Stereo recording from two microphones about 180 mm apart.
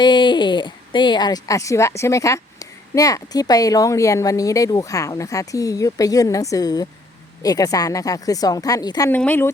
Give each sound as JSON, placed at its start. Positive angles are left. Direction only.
{"t": 0.0, "sound": "speech", "side_deg": 25}